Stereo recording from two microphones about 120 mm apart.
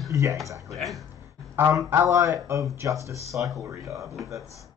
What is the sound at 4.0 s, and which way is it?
Speech, centre (ahead or behind).